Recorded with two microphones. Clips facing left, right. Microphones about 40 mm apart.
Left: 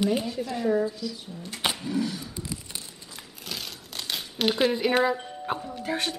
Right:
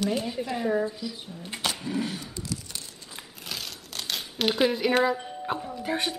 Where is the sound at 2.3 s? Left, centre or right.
Left.